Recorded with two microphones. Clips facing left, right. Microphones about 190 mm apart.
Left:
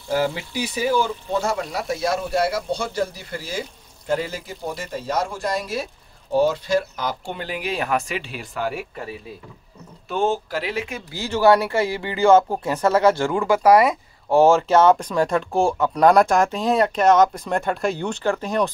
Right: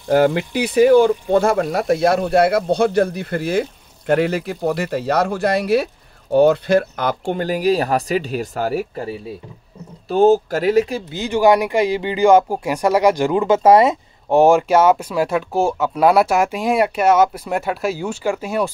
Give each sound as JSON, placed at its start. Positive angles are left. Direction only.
{"t": 0.1, "sound": "speech", "side_deg": -60}
{"t": 11.1, "sound": "speech", "side_deg": -20}